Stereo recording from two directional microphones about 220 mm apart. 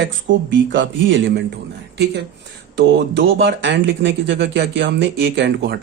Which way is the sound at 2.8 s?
50° right (ahead or behind).